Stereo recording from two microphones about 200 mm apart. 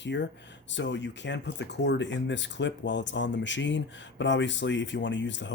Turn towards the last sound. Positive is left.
turn(degrees=65)  # may be behind; listen again after turning